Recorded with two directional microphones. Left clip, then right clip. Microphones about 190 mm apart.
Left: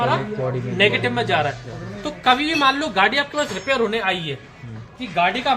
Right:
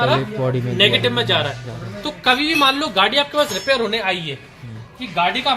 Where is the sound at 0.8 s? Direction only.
Centre (ahead or behind).